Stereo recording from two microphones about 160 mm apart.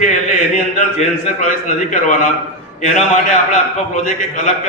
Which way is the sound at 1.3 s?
50° left (ahead or behind).